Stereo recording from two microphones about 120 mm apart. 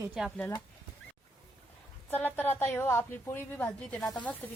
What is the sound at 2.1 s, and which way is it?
A woman's voice, 15° left (ahead or behind).